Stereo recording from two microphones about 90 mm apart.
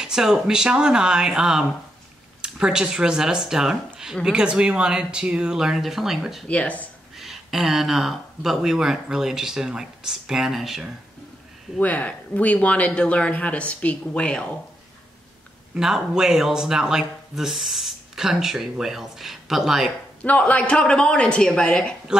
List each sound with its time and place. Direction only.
0.0 s speech: 5° right (ahead or behind)
6.4 s speech: 15° left (ahead or behind)
7.2 s speech: 5° right (ahead or behind)
11.8 s speech: 15° left (ahead or behind)
15.7 s speech: 5° right (ahead or behind)
20.2 s speech: 15° left (ahead or behind)